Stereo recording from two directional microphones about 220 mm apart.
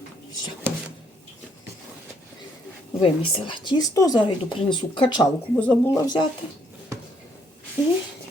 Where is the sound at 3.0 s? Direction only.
20° left (ahead or behind).